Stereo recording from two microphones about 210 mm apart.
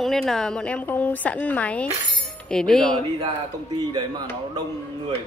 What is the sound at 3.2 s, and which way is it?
Speech, 20° right (ahead or behind).